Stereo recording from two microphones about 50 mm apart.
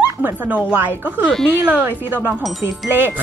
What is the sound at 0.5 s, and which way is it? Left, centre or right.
A woman's voice, right.